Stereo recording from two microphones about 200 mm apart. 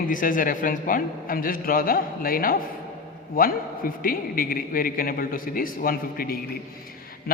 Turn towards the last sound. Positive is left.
turn(degrees=45)  # may be behind; listen again after turning